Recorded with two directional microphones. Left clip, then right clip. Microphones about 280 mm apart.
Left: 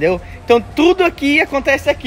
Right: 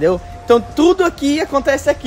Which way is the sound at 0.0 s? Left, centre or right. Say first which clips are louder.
Even; centre.